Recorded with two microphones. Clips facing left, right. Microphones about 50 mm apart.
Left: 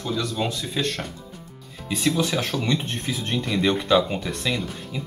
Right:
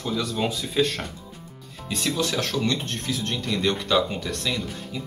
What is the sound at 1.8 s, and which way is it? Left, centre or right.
Speech, centre.